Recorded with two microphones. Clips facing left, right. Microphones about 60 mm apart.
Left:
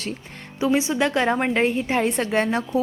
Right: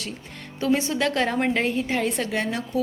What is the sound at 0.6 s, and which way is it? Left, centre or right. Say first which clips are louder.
A woman's voice: left 2 dB; centre.